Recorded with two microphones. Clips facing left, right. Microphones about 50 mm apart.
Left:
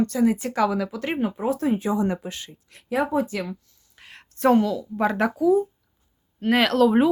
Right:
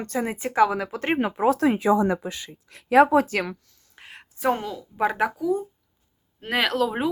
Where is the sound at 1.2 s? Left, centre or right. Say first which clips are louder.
Right 4 dB; right.